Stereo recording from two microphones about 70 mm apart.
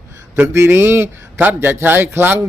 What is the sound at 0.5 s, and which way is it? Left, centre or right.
Speech, right.